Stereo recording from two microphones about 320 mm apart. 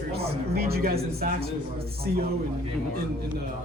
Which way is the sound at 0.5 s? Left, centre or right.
Right.